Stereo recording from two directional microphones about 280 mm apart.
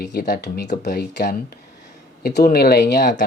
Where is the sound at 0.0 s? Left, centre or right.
Left.